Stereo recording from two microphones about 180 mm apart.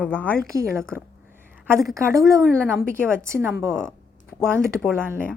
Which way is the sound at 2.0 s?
15° right (ahead or behind).